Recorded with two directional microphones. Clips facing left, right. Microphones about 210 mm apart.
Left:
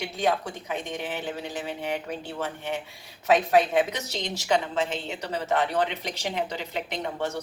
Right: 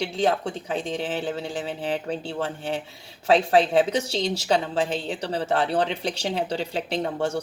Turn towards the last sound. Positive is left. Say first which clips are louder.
# right 5 dB
turn(degrees=-30)  # may be behind; listen again after turning